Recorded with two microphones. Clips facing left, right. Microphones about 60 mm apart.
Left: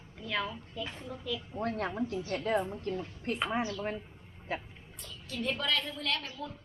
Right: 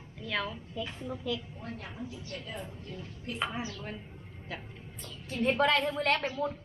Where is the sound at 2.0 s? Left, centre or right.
Left.